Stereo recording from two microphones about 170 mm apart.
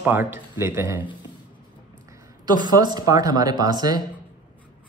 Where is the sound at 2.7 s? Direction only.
25° right (ahead or behind).